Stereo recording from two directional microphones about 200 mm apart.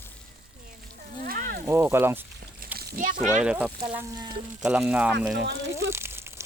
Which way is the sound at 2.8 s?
45° right (ahead or behind).